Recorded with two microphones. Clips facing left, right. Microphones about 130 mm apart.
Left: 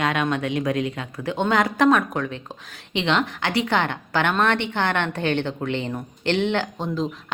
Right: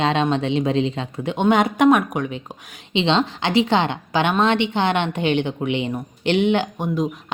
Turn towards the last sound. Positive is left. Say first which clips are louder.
# right 3 dB
turn(degrees=-15)  # may be behind; listen again after turning